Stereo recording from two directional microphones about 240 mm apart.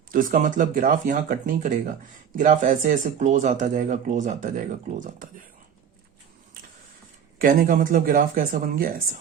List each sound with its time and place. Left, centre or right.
0.1 s speech: right
7.3 s speech: right